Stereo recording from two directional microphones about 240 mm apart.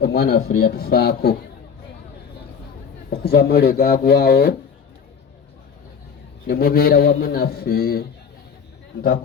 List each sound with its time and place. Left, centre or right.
0.0 s a man's voice: left
3.1 s a man's voice: left
6.5 s a man's voice: left